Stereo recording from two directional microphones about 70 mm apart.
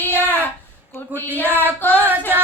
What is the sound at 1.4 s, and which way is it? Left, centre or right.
Child singing, right.